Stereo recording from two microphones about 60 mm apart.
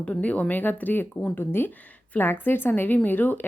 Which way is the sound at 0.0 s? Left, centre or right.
Left.